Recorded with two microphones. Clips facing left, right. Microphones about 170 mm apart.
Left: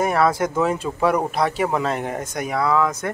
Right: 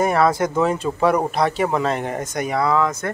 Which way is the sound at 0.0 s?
5° left (ahead or behind).